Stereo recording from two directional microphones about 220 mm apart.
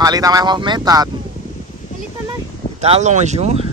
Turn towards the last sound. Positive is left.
turn(degrees=-30)  # may be behind; listen again after turning